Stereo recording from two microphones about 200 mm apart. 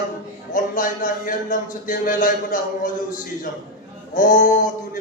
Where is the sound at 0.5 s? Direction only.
40° left (ahead or behind).